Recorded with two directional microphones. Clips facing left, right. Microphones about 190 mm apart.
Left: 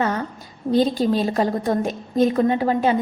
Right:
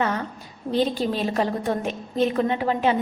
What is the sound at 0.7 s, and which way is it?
A woman's voice, 40° left (ahead or behind).